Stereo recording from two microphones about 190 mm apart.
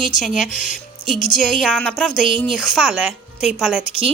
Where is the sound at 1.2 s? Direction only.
45° left (ahead or behind).